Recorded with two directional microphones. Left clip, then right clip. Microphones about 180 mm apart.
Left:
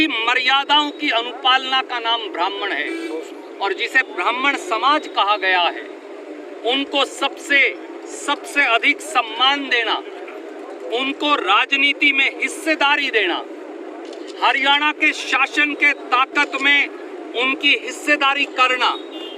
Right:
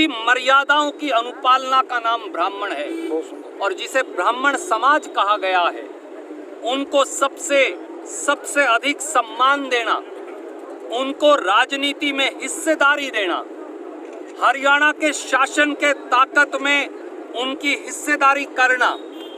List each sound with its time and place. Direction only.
0.0 s speech: 25° right (ahead or behind)
14.4 s speech: 25° right (ahead or behind)